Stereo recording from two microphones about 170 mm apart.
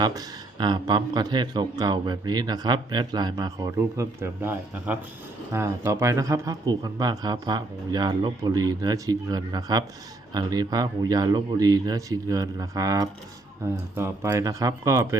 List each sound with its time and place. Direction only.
0.0 s a man's voice: 25° right (ahead or behind)